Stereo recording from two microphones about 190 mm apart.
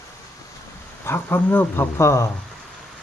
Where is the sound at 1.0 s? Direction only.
10° left (ahead or behind).